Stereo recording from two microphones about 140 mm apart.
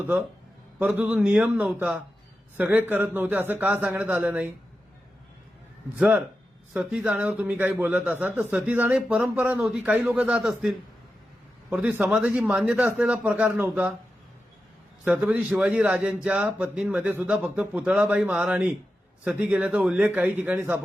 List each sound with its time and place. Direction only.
0.8 s speech: 10° right (ahead or behind)
6.0 s speech: 10° right (ahead or behind)
15.0 s speech: 10° right (ahead or behind)